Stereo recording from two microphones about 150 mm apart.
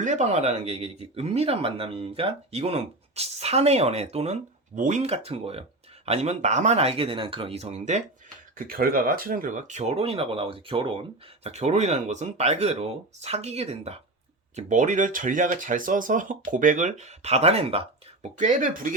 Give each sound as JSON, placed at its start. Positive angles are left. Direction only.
{"t": 0.0, "sound": "speech", "side_deg": -55}
{"t": 8.5, "sound": "speech", "side_deg": -70}
{"t": 11.4, "sound": "speech", "side_deg": -45}
{"t": 14.5, "sound": "speech", "side_deg": -55}